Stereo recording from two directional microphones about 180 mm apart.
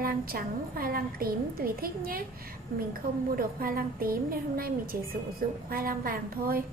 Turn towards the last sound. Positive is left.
turn(degrees=-55)  # may be behind; listen again after turning